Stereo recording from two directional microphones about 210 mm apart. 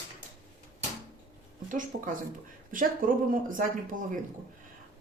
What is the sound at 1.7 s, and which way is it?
Speech, 40° right (ahead or behind).